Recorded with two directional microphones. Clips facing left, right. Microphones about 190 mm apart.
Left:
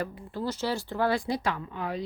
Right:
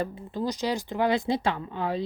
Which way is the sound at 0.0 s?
15° right (ahead or behind).